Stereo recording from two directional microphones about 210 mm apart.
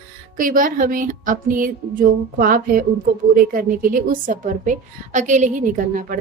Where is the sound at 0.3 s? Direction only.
40° right (ahead or behind).